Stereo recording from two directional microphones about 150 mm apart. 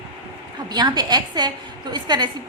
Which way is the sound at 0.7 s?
30° right (ahead or behind).